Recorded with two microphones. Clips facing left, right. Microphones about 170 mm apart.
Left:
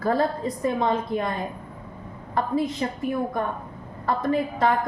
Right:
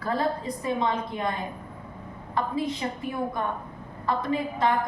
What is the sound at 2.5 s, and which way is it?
Speech, 50° left (ahead or behind).